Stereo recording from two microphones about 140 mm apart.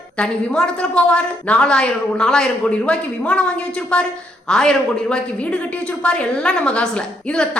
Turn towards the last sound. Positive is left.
turn(degrees=5)  # may be behind; listen again after turning